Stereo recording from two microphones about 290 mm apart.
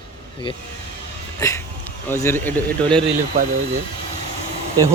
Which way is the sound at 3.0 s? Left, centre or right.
Right.